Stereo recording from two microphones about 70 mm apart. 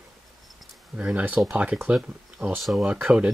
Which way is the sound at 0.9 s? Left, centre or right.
Centre.